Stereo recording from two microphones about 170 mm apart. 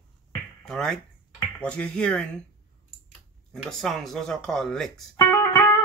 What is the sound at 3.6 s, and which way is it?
Speech, centre (ahead or behind).